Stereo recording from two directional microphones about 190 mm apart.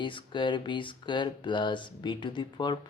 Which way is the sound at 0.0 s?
25° left (ahead or behind).